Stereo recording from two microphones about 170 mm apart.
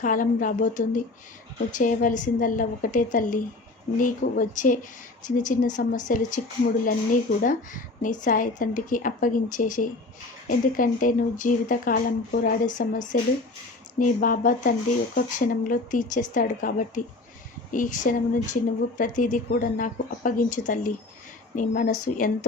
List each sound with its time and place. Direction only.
0.0 s a woman's voice: 50° left (ahead or behind)